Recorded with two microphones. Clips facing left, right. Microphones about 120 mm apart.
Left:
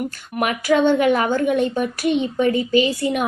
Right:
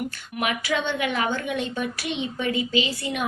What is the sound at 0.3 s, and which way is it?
A woman's voice, 50° left (ahead or behind).